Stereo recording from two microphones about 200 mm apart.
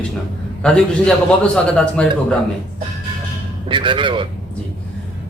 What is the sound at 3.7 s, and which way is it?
Speech, 25° right (ahead or behind).